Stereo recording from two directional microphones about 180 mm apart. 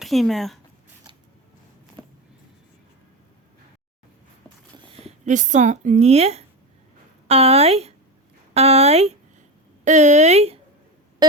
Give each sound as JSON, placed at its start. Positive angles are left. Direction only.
{"t": 0.0, "sound": "speech", "side_deg": 0}
{"t": 5.0, "sound": "speech", "side_deg": -45}
{"t": 11.2, "sound": "a sound", "side_deg": -20}